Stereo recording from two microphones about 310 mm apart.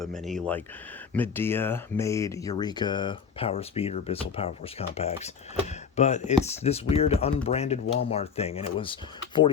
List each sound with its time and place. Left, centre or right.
0.0 s speech: centre